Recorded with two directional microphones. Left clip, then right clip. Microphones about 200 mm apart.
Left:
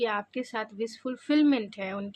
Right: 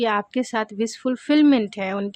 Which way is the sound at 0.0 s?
40° right (ahead or behind).